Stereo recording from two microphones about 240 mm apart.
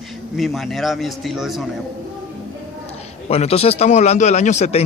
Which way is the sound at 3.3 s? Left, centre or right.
Left.